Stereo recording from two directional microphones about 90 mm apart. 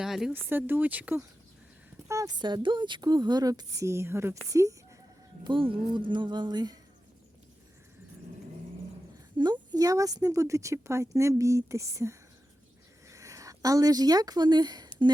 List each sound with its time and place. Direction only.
0.0 s speech: 5° right (ahead or behind)
0.3 s speech: 25° right (ahead or behind)
2.0 s a sound: 35° right (ahead or behind)
2.4 s a woman's voice: 55° right (ahead or behind); by 4.7 s 35° right (ahead or behind)
5.4 s speech: 70° right (ahead or behind); by 6.7 s 55° right (ahead or behind)
9.4 s a woman's voice: 50° right (ahead or behind)